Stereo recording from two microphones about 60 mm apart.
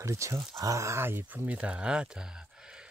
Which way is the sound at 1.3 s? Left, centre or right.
Right.